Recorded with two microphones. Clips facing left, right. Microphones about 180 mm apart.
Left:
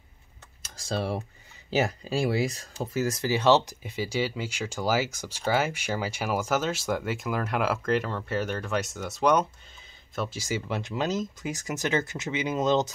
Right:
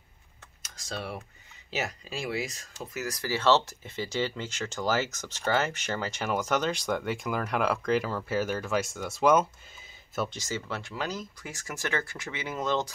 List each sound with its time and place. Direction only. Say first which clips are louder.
0.6 s speech: left 7 dB; 30° left (ahead or behind); by 9.5 s centre (ahead or behind)
10.3 s speech: left 4 dB; 10° left (ahead or behind)